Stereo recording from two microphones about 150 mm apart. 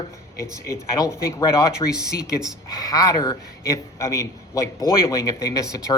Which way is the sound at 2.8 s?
25° left (ahead or behind).